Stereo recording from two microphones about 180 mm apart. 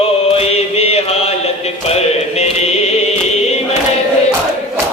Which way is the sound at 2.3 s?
35° left (ahead or behind).